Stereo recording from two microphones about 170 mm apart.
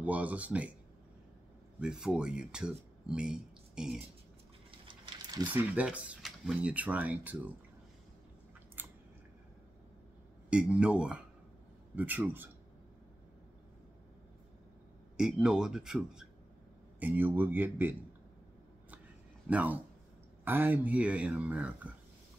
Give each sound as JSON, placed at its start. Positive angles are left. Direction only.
{"t": 0.0, "sound": "speech", "side_deg": -10}
{"t": 1.8, "sound": "speech", "side_deg": -5}
{"t": 4.6, "sound": "a sound", "side_deg": -30}
{"t": 5.6, "sound": "speech", "side_deg": -10}
{"t": 8.8, "sound": "chewing", "side_deg": -10}
{"t": 10.5, "sound": "speech", "side_deg": -5}
{"t": 15.1, "sound": "speech", "side_deg": -5}
{"t": 19.4, "sound": "speech", "side_deg": -10}